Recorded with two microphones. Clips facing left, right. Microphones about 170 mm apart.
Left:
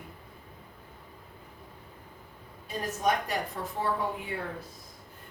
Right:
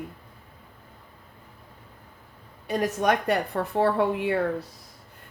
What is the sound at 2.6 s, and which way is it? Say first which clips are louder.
A woman's voice: right 6 dB; 75° right (ahead or behind).